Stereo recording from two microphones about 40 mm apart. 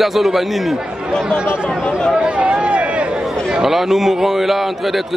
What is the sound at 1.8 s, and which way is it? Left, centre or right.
Speech, left.